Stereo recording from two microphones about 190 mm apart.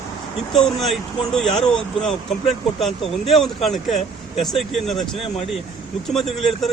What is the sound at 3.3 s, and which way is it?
Speech, centre (ahead or behind).